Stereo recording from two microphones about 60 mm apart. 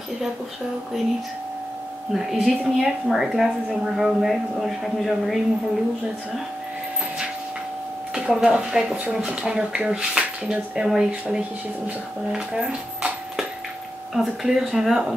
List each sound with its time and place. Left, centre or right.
2.1 s a woman's voice: centre
8.1 s a woman's voice: centre
12.3 s a sound: centre
14.1 s a woman's voice: centre